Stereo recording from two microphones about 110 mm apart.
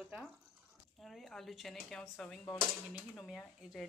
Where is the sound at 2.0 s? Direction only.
20° left (ahead or behind).